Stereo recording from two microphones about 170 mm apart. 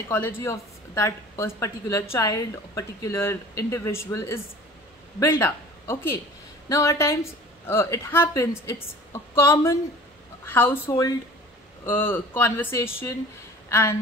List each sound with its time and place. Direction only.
0.1 s a man's voice: 15° left (ahead or behind)